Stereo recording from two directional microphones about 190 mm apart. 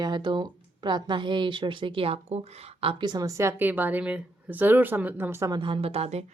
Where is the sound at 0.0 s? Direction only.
25° right (ahead or behind).